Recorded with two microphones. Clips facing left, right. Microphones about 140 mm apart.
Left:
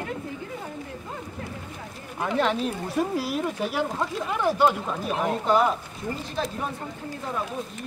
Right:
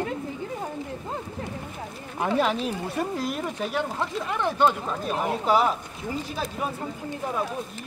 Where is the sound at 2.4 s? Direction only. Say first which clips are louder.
Even; 5° right (ahead or behind).